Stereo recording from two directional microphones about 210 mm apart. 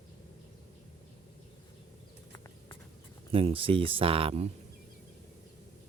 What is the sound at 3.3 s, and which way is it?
Speech, 25° right (ahead or behind).